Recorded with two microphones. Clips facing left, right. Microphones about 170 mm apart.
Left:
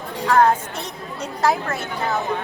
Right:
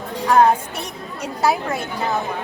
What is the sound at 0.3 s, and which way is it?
Speech, 15° right (ahead or behind).